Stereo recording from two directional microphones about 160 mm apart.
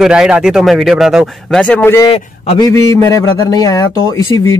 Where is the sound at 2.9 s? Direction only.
20° left (ahead or behind).